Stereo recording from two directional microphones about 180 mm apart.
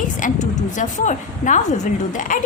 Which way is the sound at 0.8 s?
45° left (ahead or behind).